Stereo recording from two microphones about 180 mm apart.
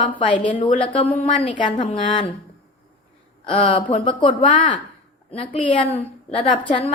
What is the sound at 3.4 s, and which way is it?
A woman's voice, 30° left (ahead or behind).